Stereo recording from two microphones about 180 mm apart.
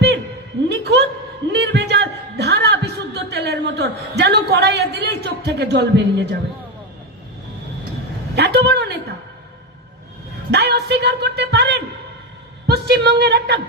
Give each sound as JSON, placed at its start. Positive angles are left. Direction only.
{"t": 0.7, "sound": "a woman's voice", "side_deg": -70}
{"t": 1.5, "sound": "a sound", "side_deg": -70}
{"t": 8.4, "sound": "a woman's voice", "side_deg": -70}
{"t": 10.5, "sound": "a woman's voice", "side_deg": -70}